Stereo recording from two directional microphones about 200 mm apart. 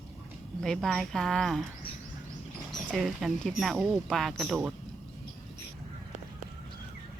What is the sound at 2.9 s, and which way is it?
Speech, centre (ahead or behind).